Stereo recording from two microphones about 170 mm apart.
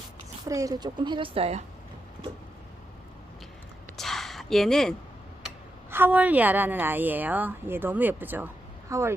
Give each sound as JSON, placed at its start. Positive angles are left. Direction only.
{"t": 0.4, "sound": "speech", "side_deg": -20}
{"t": 3.9, "sound": "a sound", "side_deg": 0}
{"t": 5.9, "sound": "a woman's voice", "side_deg": -10}